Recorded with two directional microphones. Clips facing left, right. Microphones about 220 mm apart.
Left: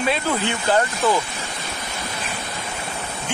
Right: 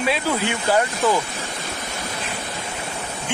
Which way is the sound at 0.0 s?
5° right (ahead or behind).